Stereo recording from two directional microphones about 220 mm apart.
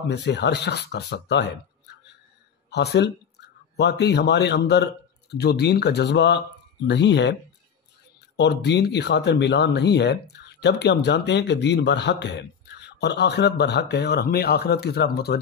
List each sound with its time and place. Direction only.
0.1 s speech: 50° left (ahead or behind)
8.4 s speech: 50° left (ahead or behind)